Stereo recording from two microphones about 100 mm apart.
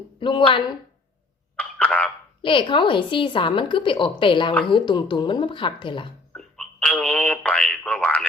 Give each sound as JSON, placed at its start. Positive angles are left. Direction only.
{"t": 0.2, "sound": "a woman's voice", "side_deg": 55}
{"t": 1.5, "sound": "a sound", "side_deg": 15}
{"t": 2.4, "sound": "a woman's voice", "side_deg": 55}
{"t": 6.3, "sound": "speech", "side_deg": 10}